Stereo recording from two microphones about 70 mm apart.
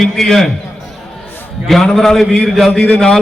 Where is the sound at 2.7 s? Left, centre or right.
Centre.